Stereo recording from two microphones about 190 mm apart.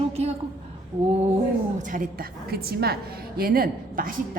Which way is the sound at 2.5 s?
55° right (ahead or behind).